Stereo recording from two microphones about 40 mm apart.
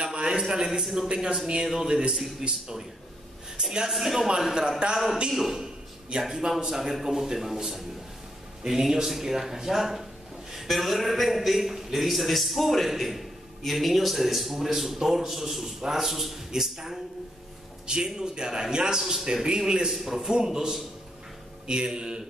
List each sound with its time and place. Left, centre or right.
0.0 s a sound: centre
0.7 s a man's voice: centre
1.0 s a man's voice: centre
3.9 s a man's voice: centre
8.6 s a man's voice: centre
19.9 s a man's voice: centre